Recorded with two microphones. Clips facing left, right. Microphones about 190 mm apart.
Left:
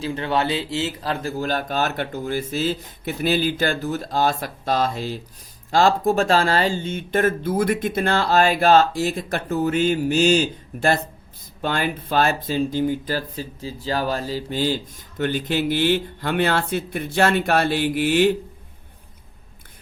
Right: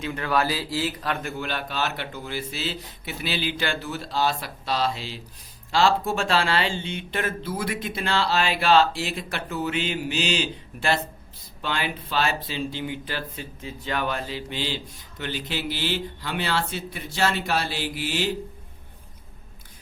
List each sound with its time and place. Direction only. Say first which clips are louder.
0.0 s speech: left 2 dB; 30° left (ahead or behind); by 18.3 s 55° left (ahead or behind)